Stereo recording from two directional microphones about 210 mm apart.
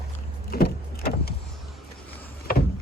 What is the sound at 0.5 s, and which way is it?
Vehicle, 45° left (ahead or behind).